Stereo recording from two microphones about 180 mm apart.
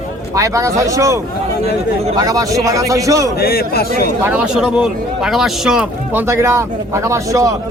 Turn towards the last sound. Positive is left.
turn(degrees=-15)  # may be behind; listen again after turning